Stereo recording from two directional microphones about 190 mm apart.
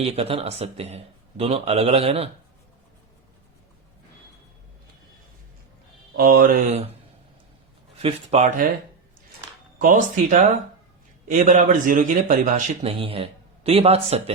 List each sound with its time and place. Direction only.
0.0 s a man's voice: 30° right (ahead or behind)
6.1 s speech: 50° right (ahead or behind)
8.0 s a man's voice: 35° right (ahead or behind)
9.7 s a man's voice: 45° right (ahead or behind)
13.0 s a man's voice: 30° right (ahead or behind)